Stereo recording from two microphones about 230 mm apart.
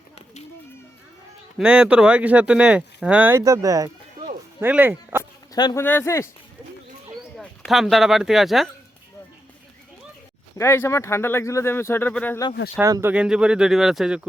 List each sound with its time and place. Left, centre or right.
1.5 s speech: centre
5.5 s a man's voice: centre
7.3 s speech: centre
10.6 s speech: centre
12.8 s speech: centre